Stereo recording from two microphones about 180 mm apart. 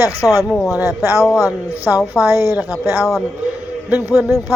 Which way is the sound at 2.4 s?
15° right (ahead or behind).